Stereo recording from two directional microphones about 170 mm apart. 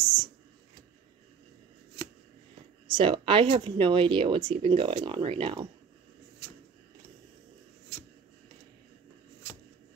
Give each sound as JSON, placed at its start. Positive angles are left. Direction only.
{"t": 2.9, "sound": "speech", "side_deg": -30}